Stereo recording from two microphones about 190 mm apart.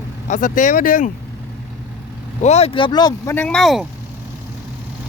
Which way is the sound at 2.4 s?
35° left (ahead or behind).